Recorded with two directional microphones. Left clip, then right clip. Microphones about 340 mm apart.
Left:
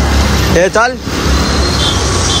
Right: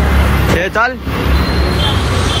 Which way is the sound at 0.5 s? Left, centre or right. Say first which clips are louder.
Left 5 dB; centre.